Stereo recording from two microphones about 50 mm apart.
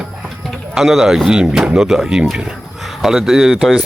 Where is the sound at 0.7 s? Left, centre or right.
Centre.